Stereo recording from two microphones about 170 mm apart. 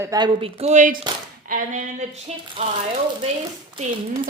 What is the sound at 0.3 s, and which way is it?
A woman's voice, 35° right (ahead or behind).